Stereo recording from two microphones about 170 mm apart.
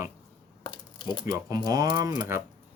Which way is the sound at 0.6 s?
25° left (ahead or behind).